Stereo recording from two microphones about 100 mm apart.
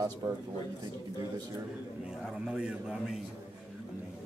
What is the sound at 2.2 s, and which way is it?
Speech, 10° right (ahead or behind).